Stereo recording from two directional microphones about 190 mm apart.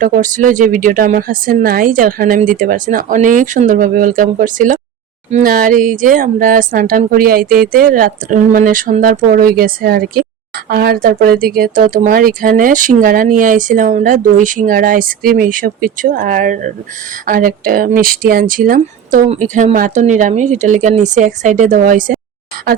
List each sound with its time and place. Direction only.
0.0 s speech: 45° right (ahead or behind)